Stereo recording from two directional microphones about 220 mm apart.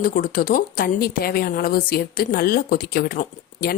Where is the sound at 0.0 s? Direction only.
40° left (ahead or behind).